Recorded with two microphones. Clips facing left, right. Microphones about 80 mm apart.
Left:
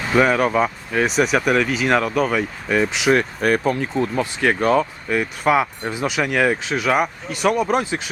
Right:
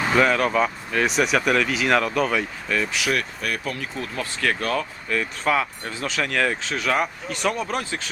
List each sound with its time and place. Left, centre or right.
0.1 s speech: centre
2.6 s speech: left
4.1 s speech: centre